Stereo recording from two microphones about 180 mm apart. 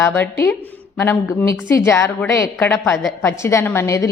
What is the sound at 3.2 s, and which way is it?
Speech, 15° left (ahead or behind).